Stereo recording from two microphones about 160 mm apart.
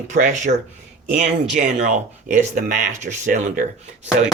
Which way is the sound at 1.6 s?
50° right (ahead or behind).